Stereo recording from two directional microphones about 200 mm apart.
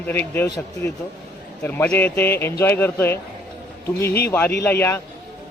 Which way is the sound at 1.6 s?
10° left (ahead or behind).